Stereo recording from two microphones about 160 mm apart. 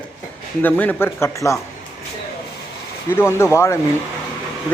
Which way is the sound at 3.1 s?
15° left (ahead or behind).